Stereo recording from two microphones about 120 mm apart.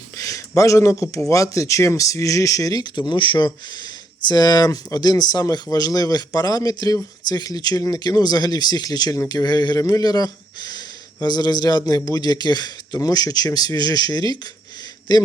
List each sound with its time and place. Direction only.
0.2 s speech: 25° left (ahead or behind)